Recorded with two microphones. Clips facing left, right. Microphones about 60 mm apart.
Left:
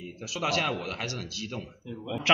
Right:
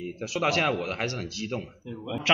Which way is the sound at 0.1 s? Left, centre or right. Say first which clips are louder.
Right 3 dB; right.